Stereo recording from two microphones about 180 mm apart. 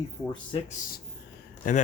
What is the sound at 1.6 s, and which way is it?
Speech, 45° left (ahead or behind).